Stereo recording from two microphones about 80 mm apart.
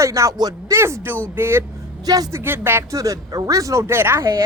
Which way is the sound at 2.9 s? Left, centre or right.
Right.